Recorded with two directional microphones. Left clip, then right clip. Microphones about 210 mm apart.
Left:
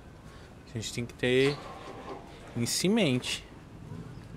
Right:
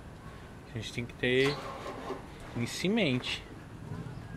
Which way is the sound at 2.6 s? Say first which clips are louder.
Left 3 dB; 35° left (ahead or behind).